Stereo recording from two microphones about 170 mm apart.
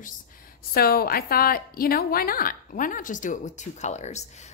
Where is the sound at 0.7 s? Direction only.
60° left (ahead or behind).